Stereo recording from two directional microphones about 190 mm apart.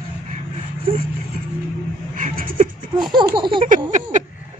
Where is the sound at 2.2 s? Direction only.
45° right (ahead or behind).